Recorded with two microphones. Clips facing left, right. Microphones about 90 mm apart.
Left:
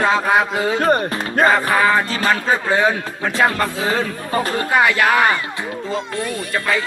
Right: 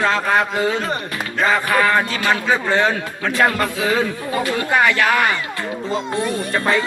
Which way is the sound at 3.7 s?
35° left (ahead or behind).